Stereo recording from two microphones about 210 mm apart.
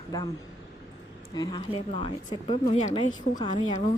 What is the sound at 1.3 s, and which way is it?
Speech, 20° left (ahead or behind).